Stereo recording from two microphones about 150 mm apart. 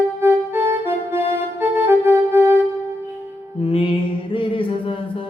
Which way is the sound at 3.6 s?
40° left (ahead or behind).